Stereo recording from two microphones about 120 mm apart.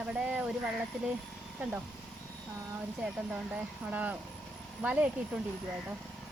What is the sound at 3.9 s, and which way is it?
Speech, 15° right (ahead or behind).